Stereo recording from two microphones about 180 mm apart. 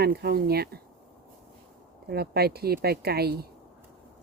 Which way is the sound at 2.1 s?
60° right (ahead or behind).